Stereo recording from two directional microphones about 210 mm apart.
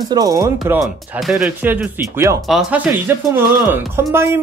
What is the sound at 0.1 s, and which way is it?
Speech, 15° right (ahead or behind).